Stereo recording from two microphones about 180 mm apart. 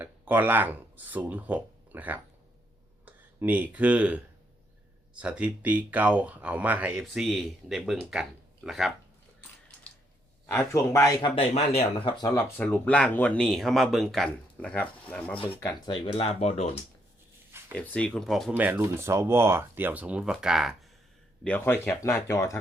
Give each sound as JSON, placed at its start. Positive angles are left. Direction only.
{"t": 0.0, "sound": "speech", "side_deg": -10}
{"t": 10.5, "sound": "speech", "side_deg": 15}
{"t": 11.3, "sound": "speech", "side_deg": 35}
{"t": 12.3, "sound": "speech", "side_deg": 10}
{"t": 15.7, "sound": "speech", "side_deg": 30}
{"t": 17.7, "sound": "speech", "side_deg": 5}
{"t": 18.5, "sound": "speech", "side_deg": -10}
{"t": 21.4, "sound": "speech", "side_deg": 10}